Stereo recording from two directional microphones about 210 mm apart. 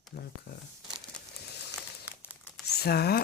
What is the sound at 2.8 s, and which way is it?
Speech, 50° left (ahead or behind).